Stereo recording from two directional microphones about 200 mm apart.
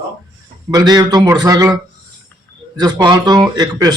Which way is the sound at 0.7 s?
20° right (ahead or behind).